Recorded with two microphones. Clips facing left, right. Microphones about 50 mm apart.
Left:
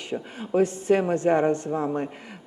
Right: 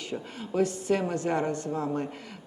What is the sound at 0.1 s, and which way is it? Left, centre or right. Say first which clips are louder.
A man's voice: left 7 dB; left.